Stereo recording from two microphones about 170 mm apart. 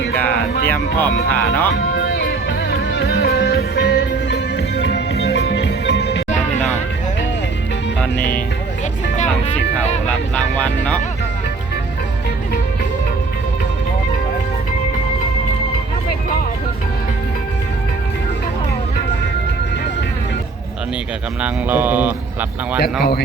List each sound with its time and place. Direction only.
0.2 s music: 10° left (ahead or behind)
0.7 s speech: 10° left (ahead or behind)
1.7 s music: 90° left
10.1 s speech: 5° left (ahead or behind)
21.4 s speech: 10° right (ahead or behind)